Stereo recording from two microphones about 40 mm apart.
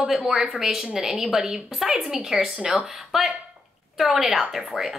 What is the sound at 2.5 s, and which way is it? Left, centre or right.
Speech, right.